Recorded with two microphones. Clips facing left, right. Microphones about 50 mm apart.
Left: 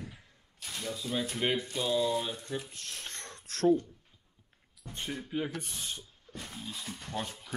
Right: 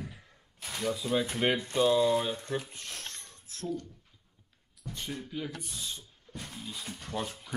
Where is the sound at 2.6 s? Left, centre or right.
Centre.